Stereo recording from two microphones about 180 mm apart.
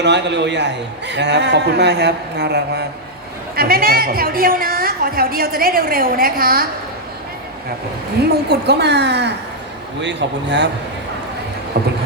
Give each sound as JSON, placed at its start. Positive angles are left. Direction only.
{"t": 0.0, "sound": "a man's voice", "side_deg": -75}
{"t": 3.5, "sound": "a woman's voice", "side_deg": -55}
{"t": 8.3, "sound": "a man's voice", "side_deg": -65}